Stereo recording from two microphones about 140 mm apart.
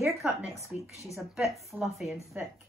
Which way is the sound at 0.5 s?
20° left (ahead or behind).